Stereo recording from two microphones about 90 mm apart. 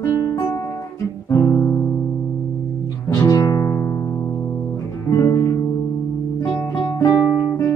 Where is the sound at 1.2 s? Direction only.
30° left (ahead or behind).